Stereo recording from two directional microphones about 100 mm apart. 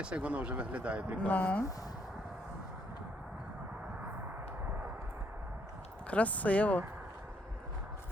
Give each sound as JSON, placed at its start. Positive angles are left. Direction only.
{"t": 0.0, "sound": "speech", "side_deg": -10}
{"t": 1.2, "sound": "speech", "side_deg": 15}
{"t": 6.1, "sound": "speech", "side_deg": 15}